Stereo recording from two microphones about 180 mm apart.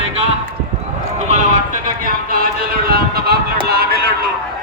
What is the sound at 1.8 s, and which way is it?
Speech, 50° right (ahead or behind).